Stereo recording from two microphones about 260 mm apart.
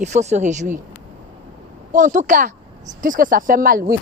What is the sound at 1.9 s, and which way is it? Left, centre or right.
Speech, right.